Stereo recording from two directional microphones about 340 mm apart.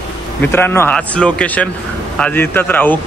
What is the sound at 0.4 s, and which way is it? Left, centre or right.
A man's voice, centre.